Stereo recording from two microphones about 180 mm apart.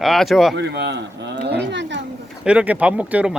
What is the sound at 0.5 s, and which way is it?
Speech, 70° right (ahead or behind).